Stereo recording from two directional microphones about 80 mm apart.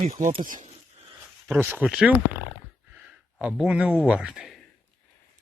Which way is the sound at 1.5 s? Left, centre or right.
Right.